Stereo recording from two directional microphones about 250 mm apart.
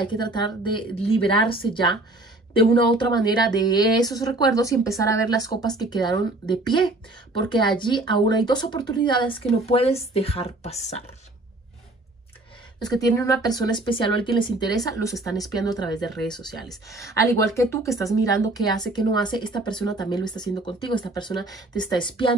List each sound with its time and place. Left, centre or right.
0.0 s speech: centre
12.7 s speech: centre
16.1 s speech: centre
16.9 s speech: centre